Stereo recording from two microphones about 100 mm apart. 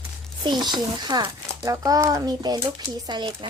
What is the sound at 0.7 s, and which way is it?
A child's voice, 45° right (ahead or behind).